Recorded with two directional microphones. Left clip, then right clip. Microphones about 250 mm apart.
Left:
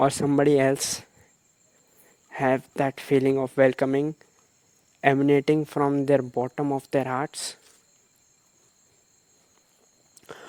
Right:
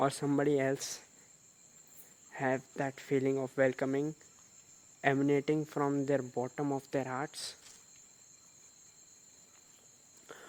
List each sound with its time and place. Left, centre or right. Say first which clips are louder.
0.0 s speech: left 10 dB; left
2.3 s speech: left 10 dB; left